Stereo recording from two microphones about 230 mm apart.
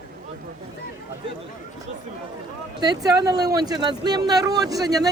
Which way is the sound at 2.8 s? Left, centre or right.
Centre.